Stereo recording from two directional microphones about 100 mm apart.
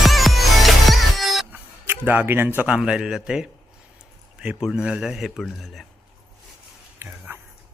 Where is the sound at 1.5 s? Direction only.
20° right (ahead or behind).